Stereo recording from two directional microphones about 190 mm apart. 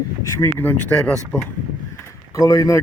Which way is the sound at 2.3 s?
20° left (ahead or behind).